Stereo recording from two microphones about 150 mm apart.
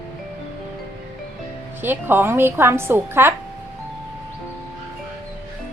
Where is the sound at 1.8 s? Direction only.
15° right (ahead or behind).